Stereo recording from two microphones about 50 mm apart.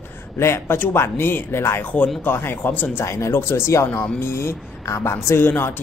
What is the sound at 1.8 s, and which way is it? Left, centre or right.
Speech, left.